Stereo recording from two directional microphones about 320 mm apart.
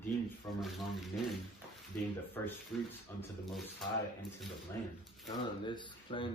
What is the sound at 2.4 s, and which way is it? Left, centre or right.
Speech, centre.